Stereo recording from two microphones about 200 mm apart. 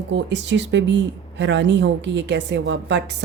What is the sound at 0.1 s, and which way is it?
Speech, 65° right (ahead or behind).